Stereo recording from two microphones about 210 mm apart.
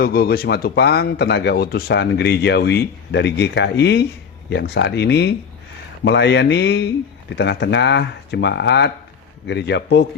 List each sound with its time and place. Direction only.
0.0 s speech: 50° left (ahead or behind)